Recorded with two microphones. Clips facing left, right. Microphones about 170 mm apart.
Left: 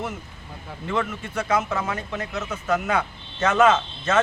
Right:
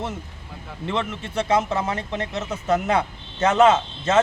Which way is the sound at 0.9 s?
25° right (ahead or behind).